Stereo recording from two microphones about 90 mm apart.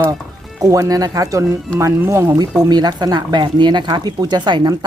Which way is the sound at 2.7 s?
50° right (ahead or behind).